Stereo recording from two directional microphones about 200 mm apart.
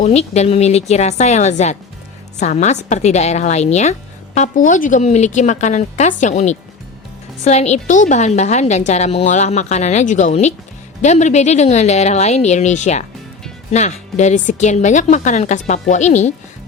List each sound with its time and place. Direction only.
0.0 s a woman's voice: 35° left (ahead or behind)